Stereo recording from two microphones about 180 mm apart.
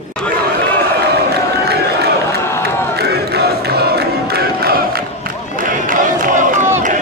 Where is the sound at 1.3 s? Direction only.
65° right (ahead or behind).